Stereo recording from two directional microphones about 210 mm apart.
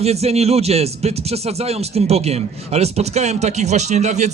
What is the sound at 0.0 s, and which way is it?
Speech, 30° right (ahead or behind).